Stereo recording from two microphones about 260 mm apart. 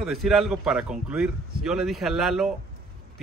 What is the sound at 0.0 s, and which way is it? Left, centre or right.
A man's voice, centre.